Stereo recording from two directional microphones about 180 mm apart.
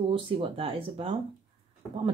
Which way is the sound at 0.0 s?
30° right (ahead or behind).